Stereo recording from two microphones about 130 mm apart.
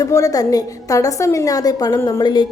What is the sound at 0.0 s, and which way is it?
A woman's voice, 25° left (ahead or behind).